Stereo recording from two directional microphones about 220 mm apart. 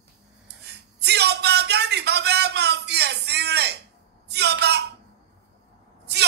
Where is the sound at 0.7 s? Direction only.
50° right (ahead or behind).